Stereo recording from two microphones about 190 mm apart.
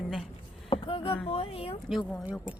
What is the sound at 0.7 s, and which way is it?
Speech, 30° left (ahead or behind).